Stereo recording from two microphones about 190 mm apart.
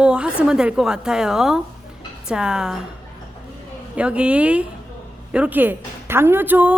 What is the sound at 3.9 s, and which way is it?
A woman's voice, 5° right (ahead or behind).